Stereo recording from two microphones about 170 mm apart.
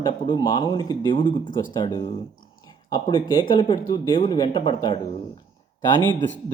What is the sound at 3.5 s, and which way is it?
Speech, 30° left (ahead or behind).